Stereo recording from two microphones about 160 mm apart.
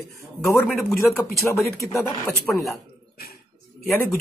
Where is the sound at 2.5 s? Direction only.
5° left (ahead or behind).